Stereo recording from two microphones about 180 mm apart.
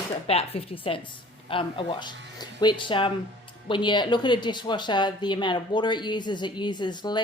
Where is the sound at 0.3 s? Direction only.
35° left (ahead or behind).